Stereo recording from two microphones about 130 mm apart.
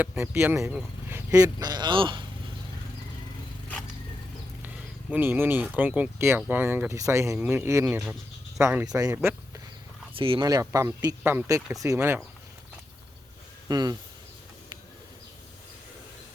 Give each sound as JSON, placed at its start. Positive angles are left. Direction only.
{"t": 0.0, "sound": "a man's voice", "side_deg": -15}
{"t": 4.6, "sound": "speech", "side_deg": -15}
{"t": 10.2, "sound": "speech", "side_deg": -40}
{"t": 10.4, "sound": "speech", "side_deg": -30}
{"t": 13.7, "sound": "speech", "side_deg": -30}